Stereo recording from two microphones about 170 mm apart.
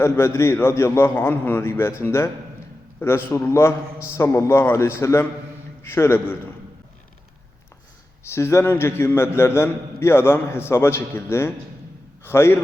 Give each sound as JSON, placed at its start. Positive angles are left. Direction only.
{"t": 0.0, "sound": "a man's voice", "side_deg": 15}
{"t": 8.3, "sound": "a man's voice", "side_deg": 15}